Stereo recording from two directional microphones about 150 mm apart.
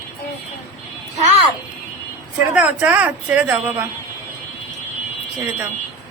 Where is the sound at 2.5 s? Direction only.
10° right (ahead or behind).